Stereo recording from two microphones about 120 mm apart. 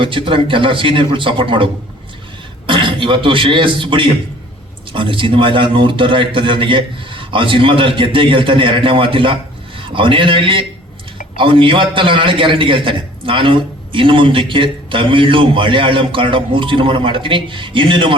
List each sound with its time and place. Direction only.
0.0 s a man's voice: 45° right (ahead or behind)